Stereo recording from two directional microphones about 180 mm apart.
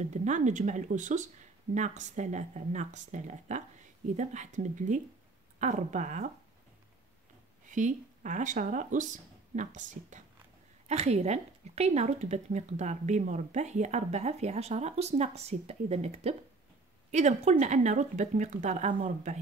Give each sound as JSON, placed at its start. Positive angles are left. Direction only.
{"t": 0.0, "sound": "speech", "side_deg": -40}
{"t": 7.7, "sound": "speech", "side_deg": -45}